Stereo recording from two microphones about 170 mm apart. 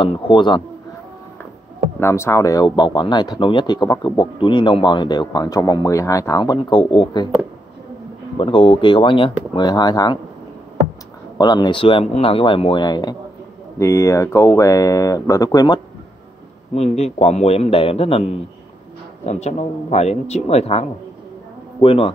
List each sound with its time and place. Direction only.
0.0 s speech: 30° left (ahead or behind)
2.0 s speech: 15° left (ahead or behind); by 7.2 s 30° left (ahead or behind)
8.4 s speech: 30° left (ahead or behind)
11.3 s speech: 25° left (ahead or behind)
16.7 s speech: 40° left (ahead or behind)